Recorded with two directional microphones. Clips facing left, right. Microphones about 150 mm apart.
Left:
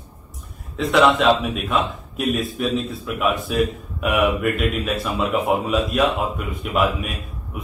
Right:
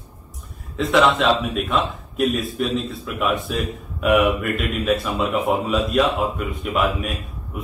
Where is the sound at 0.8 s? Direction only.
Centre (ahead or behind).